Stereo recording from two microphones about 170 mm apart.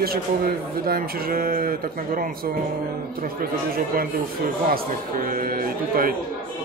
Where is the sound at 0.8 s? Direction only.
60° right (ahead or behind).